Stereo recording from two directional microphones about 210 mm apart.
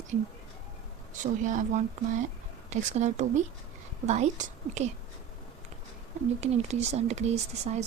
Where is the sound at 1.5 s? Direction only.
35° right (ahead or behind).